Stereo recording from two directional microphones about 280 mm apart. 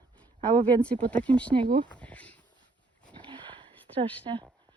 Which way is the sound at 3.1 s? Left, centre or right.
Centre.